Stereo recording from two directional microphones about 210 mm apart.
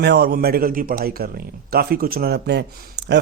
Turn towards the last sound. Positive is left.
turn(degrees=-55)  # may be behind; listen again after turning